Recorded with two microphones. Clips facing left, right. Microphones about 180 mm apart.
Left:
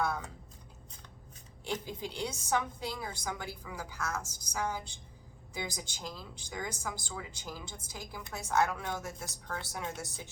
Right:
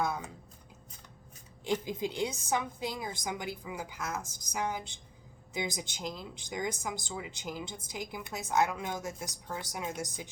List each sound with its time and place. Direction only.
0.0 s speech: 20° right (ahead or behind)
1.6 s speech: 15° right (ahead or behind)